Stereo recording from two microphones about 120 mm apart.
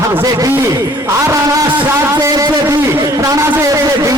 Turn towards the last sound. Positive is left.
turn(degrees=-25)  # may be behind; listen again after turning